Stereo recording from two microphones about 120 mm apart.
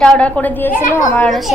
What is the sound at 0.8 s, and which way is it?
Speech, 90° left.